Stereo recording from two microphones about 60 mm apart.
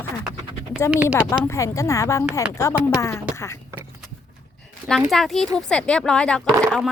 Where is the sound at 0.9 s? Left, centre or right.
Right.